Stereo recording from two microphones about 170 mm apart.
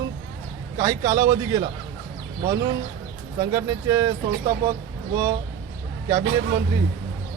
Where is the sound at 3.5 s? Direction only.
20° right (ahead or behind).